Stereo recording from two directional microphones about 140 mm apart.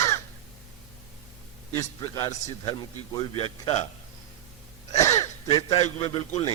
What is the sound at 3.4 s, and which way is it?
Speech, 45° left (ahead or behind).